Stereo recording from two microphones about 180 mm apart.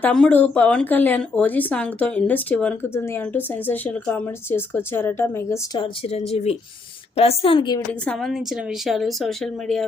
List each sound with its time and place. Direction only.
0.0 s speech: 5° left (ahead or behind)
5.8 s speech: 35° left (ahead or behind)
8.0 s speech: centre (ahead or behind)